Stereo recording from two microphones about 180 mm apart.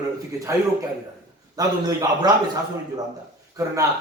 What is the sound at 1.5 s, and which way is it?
Speech, 20° right (ahead or behind).